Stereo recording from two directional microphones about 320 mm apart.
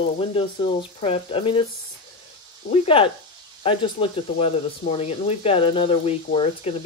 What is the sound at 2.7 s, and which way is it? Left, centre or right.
Speech, centre.